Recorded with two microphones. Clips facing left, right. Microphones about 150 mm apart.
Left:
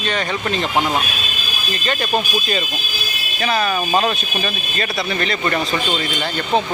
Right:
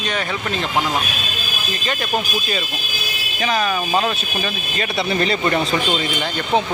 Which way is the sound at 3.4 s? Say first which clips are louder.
Left 1 dB; 10° right (ahead or behind).